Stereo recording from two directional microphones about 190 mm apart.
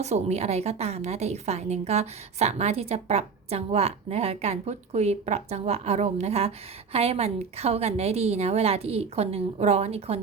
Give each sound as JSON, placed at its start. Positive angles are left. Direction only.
{"t": 0.0, "sound": "a woman's voice", "side_deg": -35}